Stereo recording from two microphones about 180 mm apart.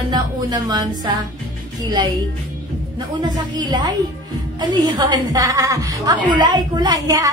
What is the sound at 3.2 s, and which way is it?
A woman's voice, 25° right (ahead or behind).